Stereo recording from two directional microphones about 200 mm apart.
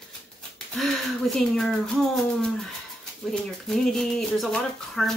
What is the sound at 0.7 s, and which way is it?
Speech, centre (ahead or behind).